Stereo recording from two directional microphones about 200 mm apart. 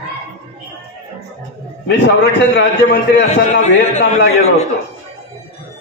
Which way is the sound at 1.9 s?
60° left (ahead or behind).